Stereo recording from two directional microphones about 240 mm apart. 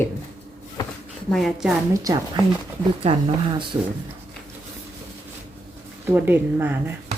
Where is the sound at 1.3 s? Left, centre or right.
Centre.